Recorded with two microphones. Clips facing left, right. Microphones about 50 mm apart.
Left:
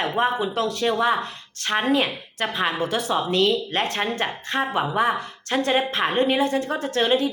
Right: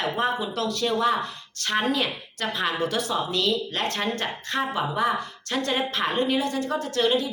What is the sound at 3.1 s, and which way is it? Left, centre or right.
Speech, left.